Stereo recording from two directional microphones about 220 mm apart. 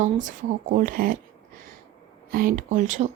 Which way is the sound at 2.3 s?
40° right (ahead or behind).